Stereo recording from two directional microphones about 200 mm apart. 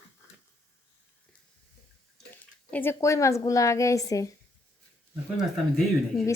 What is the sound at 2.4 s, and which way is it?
Speech, 10° left (ahead or behind).